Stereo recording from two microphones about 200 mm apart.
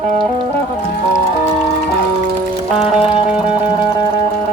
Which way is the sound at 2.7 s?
30° left (ahead or behind).